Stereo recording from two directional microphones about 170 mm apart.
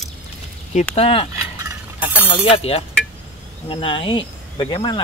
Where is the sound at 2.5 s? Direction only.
35° left (ahead or behind).